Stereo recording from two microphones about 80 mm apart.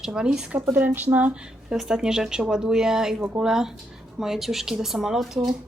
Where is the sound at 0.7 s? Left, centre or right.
Right.